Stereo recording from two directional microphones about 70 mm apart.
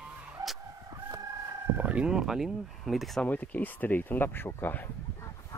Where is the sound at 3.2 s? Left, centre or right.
Left.